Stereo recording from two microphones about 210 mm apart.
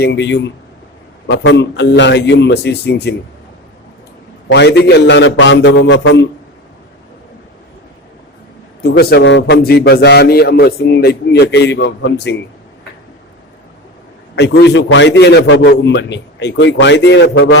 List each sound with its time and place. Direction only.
0.0 s a man's voice: 55° left (ahead or behind)
4.5 s a man's voice: 50° left (ahead or behind)
8.8 s a man's voice: 50° left (ahead or behind)
14.3 s a man's voice: 55° left (ahead or behind)